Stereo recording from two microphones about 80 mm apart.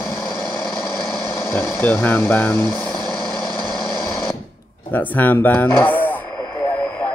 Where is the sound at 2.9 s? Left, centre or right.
Centre.